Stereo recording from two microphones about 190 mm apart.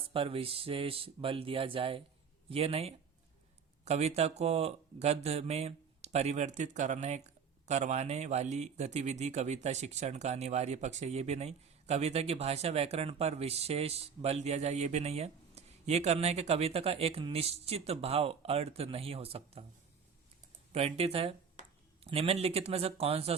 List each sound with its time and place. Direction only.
0.1 s speech: 30° right (ahead or behind)
20.7 s speech: 30° right (ahead or behind)